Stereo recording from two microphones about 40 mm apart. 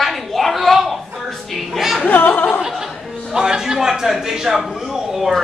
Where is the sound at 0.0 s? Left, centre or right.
Centre.